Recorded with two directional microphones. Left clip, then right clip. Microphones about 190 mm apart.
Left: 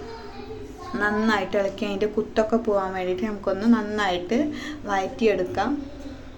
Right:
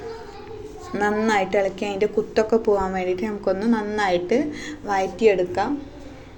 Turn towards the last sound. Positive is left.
turn(degrees=-10)  # may be behind; listen again after turning